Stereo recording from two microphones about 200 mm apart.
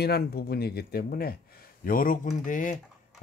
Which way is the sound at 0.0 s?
50° left (ahead or behind).